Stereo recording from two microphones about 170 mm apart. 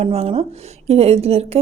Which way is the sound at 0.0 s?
35° right (ahead or behind).